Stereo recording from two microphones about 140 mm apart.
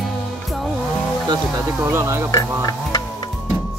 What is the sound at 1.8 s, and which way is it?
Speech, 20° right (ahead or behind).